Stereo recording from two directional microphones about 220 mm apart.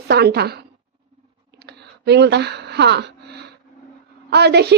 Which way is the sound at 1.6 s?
50° right (ahead or behind).